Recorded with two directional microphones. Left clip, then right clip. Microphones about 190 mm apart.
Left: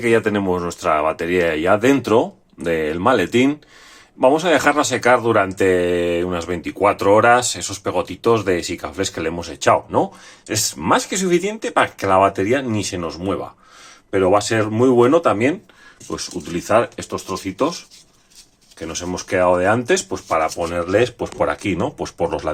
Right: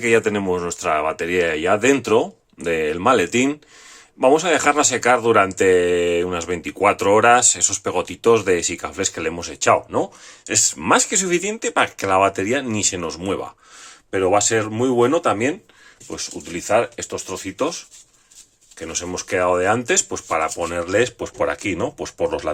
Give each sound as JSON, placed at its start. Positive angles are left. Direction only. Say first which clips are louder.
{"t": 0.0, "sound": "speech", "louder": "left 1 dB", "side_deg": -15}
{"t": 14.1, "sound": "speech", "louder": "left 1 dB", "side_deg": -10}
{"t": 18.8, "sound": "speech", "louder": "left 1 dB", "side_deg": -15}